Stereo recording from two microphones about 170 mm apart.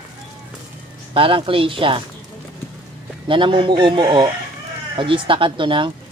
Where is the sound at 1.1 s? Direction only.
30° right (ahead or behind).